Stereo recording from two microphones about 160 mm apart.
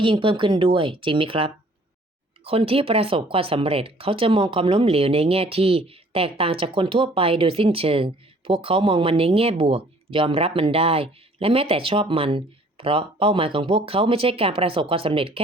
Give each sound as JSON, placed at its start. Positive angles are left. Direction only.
{"t": 0.0, "sound": "speech", "side_deg": -30}